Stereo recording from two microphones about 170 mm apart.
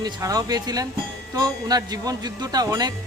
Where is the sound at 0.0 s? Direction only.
20° right (ahead or behind).